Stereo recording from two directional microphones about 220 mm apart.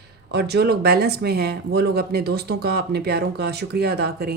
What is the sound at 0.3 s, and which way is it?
Speech, 50° right (ahead or behind).